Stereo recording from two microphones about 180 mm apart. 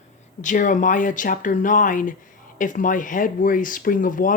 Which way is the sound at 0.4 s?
45° left (ahead or behind).